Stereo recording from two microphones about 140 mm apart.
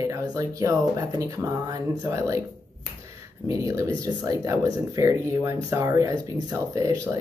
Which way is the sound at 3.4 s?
25° right (ahead or behind).